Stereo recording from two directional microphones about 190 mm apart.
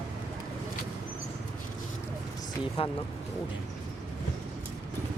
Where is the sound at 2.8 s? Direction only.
30° left (ahead or behind).